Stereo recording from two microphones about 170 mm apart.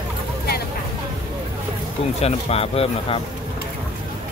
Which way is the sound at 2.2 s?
35° left (ahead or behind).